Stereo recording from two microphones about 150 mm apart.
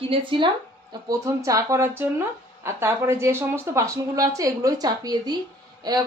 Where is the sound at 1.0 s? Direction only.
20° right (ahead or behind).